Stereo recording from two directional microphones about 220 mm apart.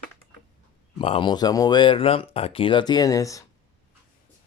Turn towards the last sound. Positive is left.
turn(degrees=15)  # may be behind; listen again after turning